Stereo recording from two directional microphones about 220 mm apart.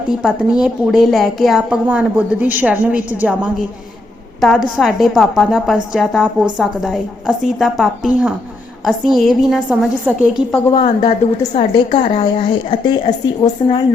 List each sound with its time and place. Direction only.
0.2 s a woman's voice: 5° right (ahead or behind)
10.8 s a woman's voice: 30° left (ahead or behind)